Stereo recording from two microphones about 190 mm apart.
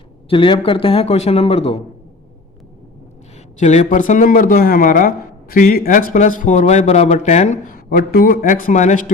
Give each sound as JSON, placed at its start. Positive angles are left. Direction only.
{"t": 0.3, "sound": "a man's voice", "side_deg": 25}
{"t": 3.6, "sound": "speech", "side_deg": 40}